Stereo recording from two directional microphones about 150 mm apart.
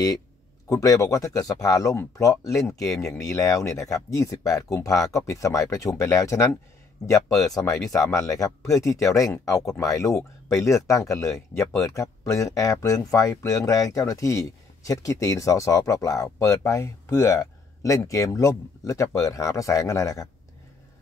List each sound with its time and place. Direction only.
0.7 s speech: 20° left (ahead or behind)